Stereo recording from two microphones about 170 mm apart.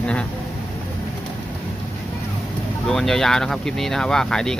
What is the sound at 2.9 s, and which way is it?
Speech, centre (ahead or behind).